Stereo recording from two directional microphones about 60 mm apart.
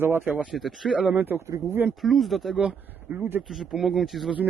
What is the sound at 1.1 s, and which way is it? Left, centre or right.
Speech, right.